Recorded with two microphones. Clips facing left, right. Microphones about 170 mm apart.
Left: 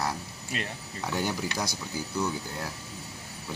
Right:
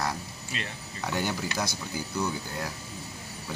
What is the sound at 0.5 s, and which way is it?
Speech, 50° left (ahead or behind).